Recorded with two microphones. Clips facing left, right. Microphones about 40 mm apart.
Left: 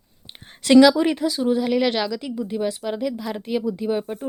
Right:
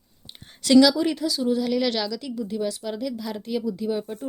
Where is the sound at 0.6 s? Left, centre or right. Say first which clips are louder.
Left 3 dB; left.